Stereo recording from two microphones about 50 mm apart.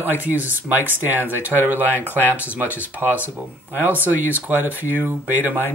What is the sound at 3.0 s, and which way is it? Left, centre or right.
Speech, right.